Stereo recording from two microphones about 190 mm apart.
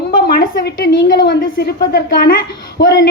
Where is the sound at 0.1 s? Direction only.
50° left (ahead or behind).